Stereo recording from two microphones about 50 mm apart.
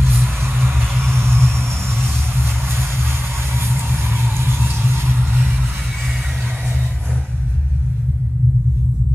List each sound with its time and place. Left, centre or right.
0.2 s music: right
3.7 s vehicle: right